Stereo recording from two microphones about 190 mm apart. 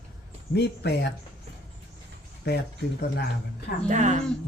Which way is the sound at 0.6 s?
60° left (ahead or behind).